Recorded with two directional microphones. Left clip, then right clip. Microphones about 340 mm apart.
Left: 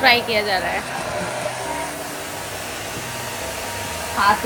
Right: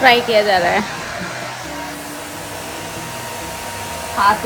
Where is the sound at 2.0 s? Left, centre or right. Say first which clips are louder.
Even; centre.